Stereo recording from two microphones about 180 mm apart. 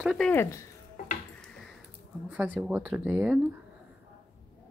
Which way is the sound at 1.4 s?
5° left (ahead or behind).